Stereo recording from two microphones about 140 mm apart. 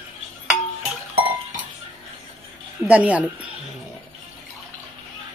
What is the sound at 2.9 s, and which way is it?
Speech, 10° right (ahead or behind).